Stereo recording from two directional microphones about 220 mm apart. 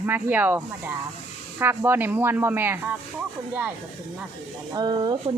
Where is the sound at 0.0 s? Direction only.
10° right (ahead or behind).